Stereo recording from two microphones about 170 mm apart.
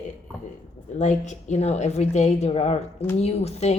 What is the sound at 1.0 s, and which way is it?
Speech, 45° left (ahead or behind).